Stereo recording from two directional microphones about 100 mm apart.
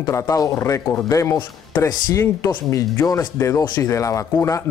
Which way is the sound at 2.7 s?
35° left (ahead or behind).